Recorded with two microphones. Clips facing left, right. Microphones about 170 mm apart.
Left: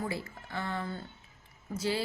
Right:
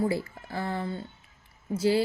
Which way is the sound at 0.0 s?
35° right (ahead or behind).